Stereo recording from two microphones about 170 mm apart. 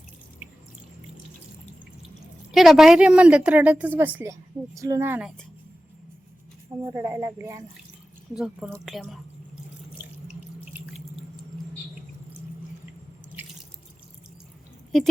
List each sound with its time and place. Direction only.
2.5 s a woman's voice: centre (ahead or behind)
6.9 s a woman's voice: 15° right (ahead or behind)
8.8 s speech: centre (ahead or behind)